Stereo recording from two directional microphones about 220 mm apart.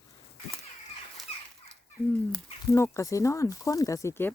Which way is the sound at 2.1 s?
5° left (ahead or behind).